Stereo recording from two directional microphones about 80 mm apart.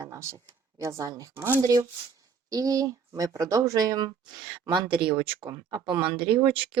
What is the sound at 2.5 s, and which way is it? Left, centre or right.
Speech, right.